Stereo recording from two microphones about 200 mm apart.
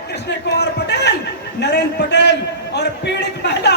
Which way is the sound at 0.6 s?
55° left (ahead or behind).